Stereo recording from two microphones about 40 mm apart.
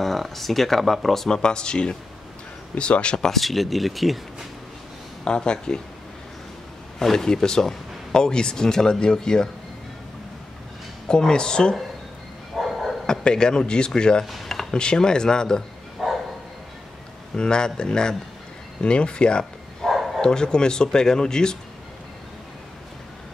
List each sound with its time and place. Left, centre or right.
0.0 s speech: centre
1.3 s speech: left
3.3 s speech: centre
5.2 s speech: left
7.0 s speech: centre
11.1 s speech: centre
12.5 s bow-wow: centre
13.0 s speech: centre
14.2 s a sound: centre
14.7 s speech: centre
16.0 s dog: centre
17.4 s speech: centre
19.8 s bow-wow: centre
20.2 s speech: centre